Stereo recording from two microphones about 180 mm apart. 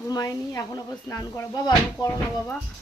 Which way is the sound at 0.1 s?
20° left (ahead or behind).